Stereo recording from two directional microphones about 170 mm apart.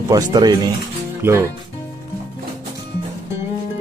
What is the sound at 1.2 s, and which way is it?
Speech, 15° right (ahead or behind).